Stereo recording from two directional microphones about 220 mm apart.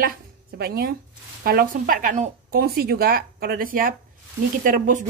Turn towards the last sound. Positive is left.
turn(degrees=-35)  # may be behind; listen again after turning